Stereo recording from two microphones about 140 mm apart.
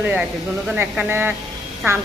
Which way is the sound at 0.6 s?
10° right (ahead or behind).